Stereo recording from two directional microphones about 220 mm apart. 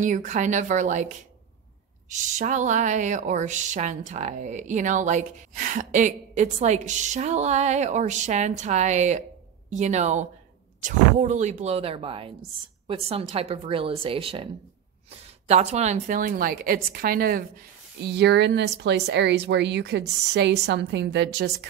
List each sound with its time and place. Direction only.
0.0 s speech: 35° right (ahead or behind)
18.0 s speech: 50° right (ahead or behind)